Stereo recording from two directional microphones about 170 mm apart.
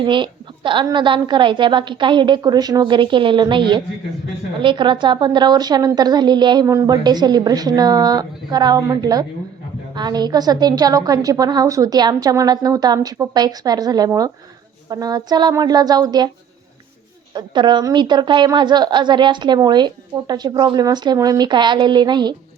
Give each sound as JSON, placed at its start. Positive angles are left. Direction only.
{"t": 0.0, "sound": "a woman's voice", "side_deg": -30}
{"t": 17.3, "sound": "a woman's voice", "side_deg": -25}